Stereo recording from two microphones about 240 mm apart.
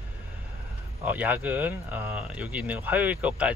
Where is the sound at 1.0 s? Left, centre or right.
Centre.